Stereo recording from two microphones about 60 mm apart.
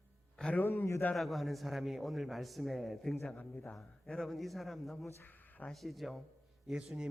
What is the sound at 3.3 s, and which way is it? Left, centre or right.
Speech, left.